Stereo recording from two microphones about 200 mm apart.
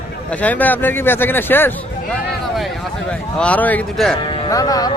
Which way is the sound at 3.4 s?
5° left (ahead or behind).